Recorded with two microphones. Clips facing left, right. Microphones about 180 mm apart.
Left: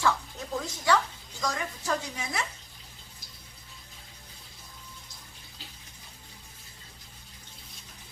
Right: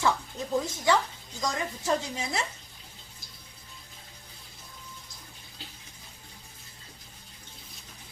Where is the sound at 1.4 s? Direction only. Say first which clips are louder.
Right 1 dB; 20° right (ahead or behind).